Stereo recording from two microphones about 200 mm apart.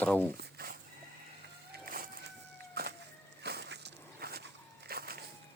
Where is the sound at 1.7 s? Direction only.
45° right (ahead or behind).